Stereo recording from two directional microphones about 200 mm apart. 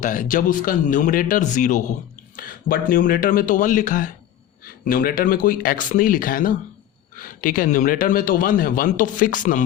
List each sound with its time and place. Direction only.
0.0 s a man's voice: 40° left (ahead or behind)